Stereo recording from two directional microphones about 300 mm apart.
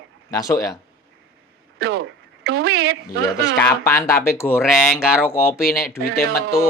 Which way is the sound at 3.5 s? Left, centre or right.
Centre.